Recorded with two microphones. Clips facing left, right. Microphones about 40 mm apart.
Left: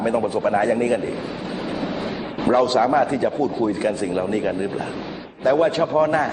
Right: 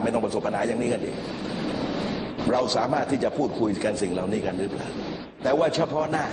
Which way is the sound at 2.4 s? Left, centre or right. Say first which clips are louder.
Left 7 dB; left.